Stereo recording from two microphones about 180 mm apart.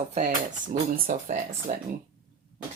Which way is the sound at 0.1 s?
45° right (ahead or behind).